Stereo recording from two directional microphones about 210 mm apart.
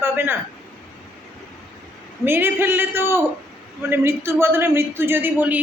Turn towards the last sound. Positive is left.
turn(degrees=-10)  # may be behind; listen again after turning